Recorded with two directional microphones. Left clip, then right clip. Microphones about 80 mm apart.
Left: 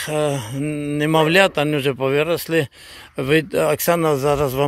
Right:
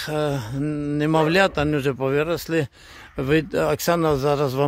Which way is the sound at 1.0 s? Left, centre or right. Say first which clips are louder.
Left 4 dB; centre.